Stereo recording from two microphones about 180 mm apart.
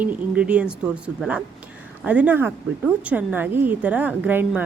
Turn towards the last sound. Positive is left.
turn(degrees=-10)  # may be behind; listen again after turning